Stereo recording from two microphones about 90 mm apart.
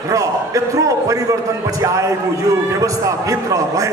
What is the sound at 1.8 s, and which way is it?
A man's voice, 35° right (ahead or behind).